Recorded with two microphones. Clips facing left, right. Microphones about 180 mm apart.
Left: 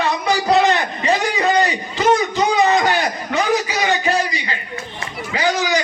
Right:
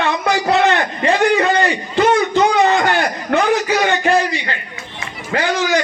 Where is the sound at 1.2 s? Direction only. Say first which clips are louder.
Right 5 dB; 60° right (ahead or behind).